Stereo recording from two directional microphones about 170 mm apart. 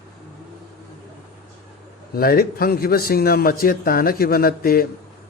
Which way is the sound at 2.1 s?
60° left (ahead or behind).